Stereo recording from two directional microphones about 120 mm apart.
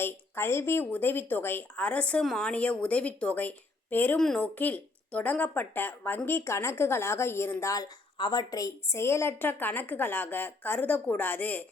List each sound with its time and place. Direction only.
0.0 s a woman's voice: 20° left (ahead or behind)
4.2 s speech: 5° left (ahead or behind)
4.5 s a woman's voice: 15° left (ahead or behind)